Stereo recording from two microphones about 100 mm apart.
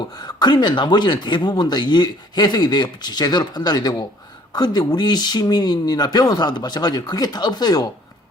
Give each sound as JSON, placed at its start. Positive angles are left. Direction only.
{"t": 0.1, "sound": "speech", "side_deg": 40}